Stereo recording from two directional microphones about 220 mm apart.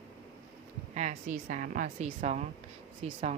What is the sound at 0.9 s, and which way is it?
Speech, 35° right (ahead or behind).